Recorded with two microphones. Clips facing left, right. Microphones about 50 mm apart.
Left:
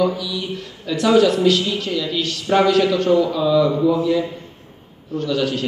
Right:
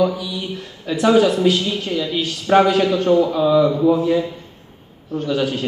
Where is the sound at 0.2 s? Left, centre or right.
Centre.